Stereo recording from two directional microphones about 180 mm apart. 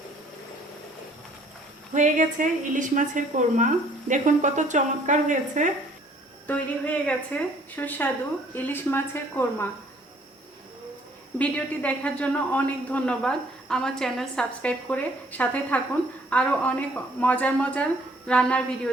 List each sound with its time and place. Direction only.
1.9 s a woman's voice: 45° right (ahead or behind)
6.5 s a man's voice: 10° left (ahead or behind)
11.3 s a man's voice: 10° left (ahead or behind)